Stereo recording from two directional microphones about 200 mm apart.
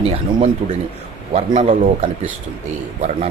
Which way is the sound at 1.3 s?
35° right (ahead or behind).